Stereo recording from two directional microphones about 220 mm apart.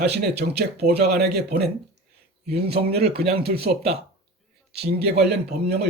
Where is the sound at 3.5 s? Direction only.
35° right (ahead or behind).